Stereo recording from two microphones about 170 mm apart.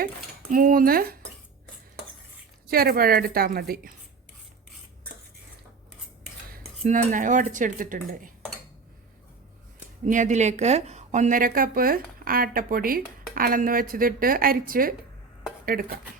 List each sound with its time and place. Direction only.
0.5 s a woman's voice: 55° right (ahead or behind)
2.6 s a woman's voice: 60° right (ahead or behind)
7.1 s speech: 50° right (ahead or behind)
10.1 s a woman's voice: 45° right (ahead or behind)